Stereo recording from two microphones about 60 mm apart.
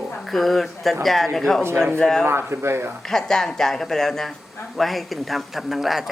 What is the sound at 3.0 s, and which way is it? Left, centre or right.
Speech, centre.